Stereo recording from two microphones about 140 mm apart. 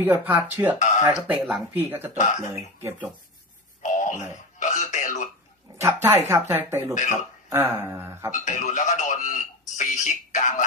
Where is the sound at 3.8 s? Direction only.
65° left (ahead or behind).